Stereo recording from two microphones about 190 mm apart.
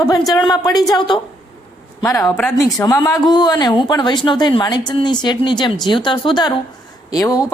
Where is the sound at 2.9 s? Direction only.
20° left (ahead or behind).